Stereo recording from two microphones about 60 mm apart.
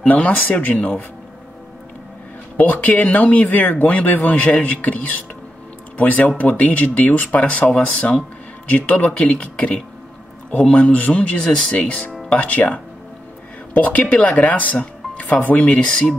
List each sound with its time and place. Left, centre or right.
0.1 s speech: left
2.5 s speech: left